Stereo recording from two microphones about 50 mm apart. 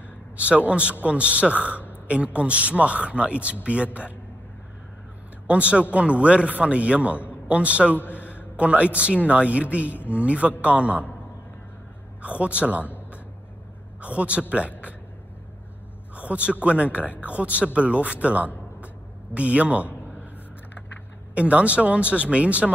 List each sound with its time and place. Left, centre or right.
0.7 s a man's voice: right
5.5 s a man's voice: right
7.9 s a sound: left
8.5 s a man's voice: right
12.2 s a man's voice: right
14.0 s a man's voice: right
16.2 s a man's voice: right
17.0 s speech: left
17.3 s a man's voice: right
19.9 s a sound: left
21.4 s a man's voice: right